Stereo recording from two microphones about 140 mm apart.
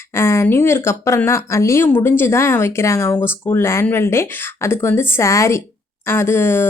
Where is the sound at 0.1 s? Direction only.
20° left (ahead or behind).